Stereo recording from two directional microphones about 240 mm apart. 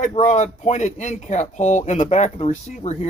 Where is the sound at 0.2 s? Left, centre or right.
Left.